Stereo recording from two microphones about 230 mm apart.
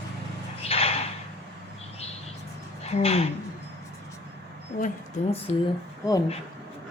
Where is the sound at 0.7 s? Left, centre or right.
Left.